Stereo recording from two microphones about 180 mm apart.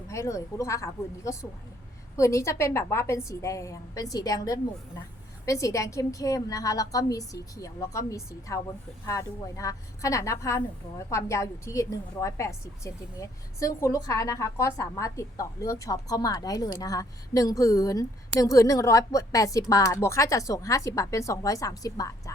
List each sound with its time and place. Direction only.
0.1 s a woman's voice: 15° left (ahead or behind)